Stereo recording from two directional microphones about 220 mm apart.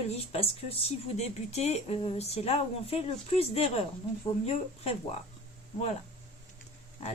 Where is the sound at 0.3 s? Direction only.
25° left (ahead or behind).